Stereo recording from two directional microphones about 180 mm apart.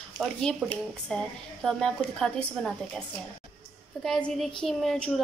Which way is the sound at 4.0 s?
Centre (ahead or behind).